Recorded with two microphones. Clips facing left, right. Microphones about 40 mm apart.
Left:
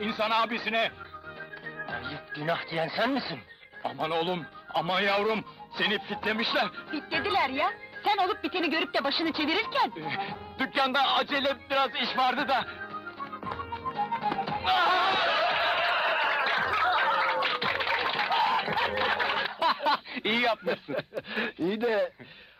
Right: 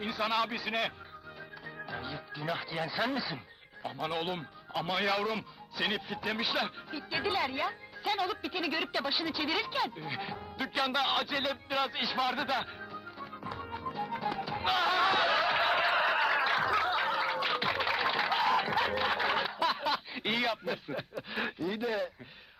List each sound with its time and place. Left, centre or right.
0.0 s speech: centre
1.6 s music: centre
2.4 s speech: centre
12.8 s music: centre
21.3 s speech: centre